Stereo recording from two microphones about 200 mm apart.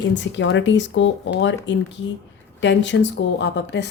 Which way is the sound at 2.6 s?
65° left (ahead or behind).